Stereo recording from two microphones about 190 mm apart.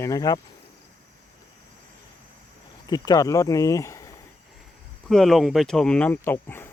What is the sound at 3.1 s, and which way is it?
Speech, 20° left (ahead or behind).